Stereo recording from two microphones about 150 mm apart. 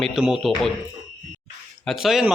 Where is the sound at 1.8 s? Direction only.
Centre (ahead or behind).